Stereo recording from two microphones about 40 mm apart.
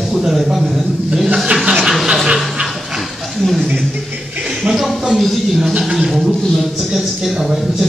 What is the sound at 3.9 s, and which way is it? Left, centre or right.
Speech, right.